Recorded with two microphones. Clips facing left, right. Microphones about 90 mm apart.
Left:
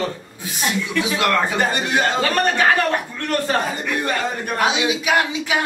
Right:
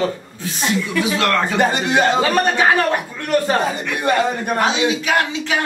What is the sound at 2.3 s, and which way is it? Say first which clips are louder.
A man's voice: right 2 dB; 5° right (ahead or behind).